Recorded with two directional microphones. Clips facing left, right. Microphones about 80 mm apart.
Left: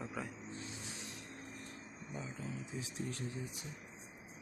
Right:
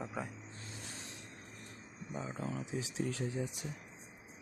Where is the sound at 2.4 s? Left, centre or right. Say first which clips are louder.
Right 5 dB; right.